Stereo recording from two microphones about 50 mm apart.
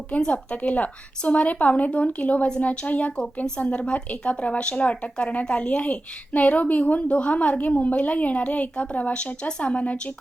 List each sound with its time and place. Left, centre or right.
0.3 s speech: left